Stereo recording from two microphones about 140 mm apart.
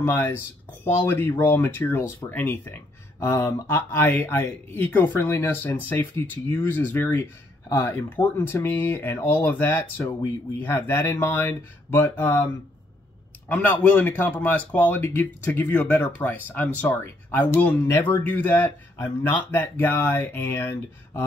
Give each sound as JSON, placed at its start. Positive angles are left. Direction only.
{"t": 0.0, "sound": "speech", "side_deg": 15}
{"t": 13.5, "sound": "speech", "side_deg": 10}